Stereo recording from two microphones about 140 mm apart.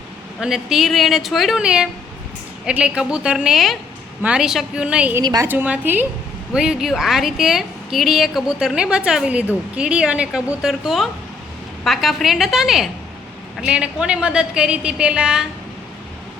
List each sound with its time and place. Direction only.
0.3 s a woman's voice: centre (ahead or behind)
5.2 s a woman's voice: 30° right (ahead or behind)
5.5 s a woman's voice: 10° right (ahead or behind)